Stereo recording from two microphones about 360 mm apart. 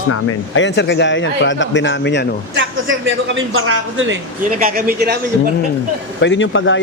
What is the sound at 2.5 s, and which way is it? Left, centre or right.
Speech, right.